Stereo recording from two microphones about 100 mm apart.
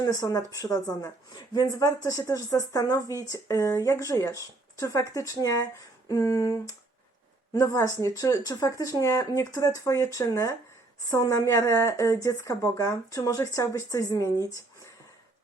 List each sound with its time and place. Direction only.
0.0 s speech: 35° left (ahead or behind)